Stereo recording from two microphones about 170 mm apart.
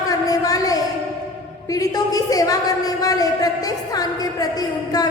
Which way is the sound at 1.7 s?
20° left (ahead or behind).